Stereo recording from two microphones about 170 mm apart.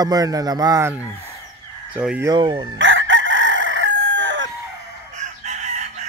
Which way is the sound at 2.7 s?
90° right.